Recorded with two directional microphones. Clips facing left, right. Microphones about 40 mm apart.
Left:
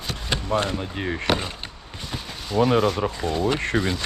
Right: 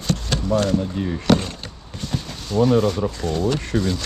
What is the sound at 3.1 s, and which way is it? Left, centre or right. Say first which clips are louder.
Speech: right 1 dB; centre.